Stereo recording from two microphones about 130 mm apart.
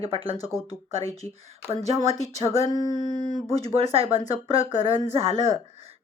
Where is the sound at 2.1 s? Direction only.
25° left (ahead or behind).